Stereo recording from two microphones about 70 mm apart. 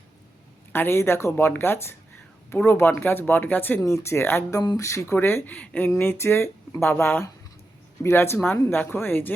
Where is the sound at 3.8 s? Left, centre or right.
Left.